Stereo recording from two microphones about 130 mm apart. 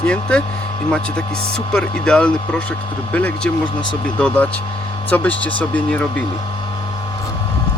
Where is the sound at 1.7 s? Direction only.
5° left (ahead or behind).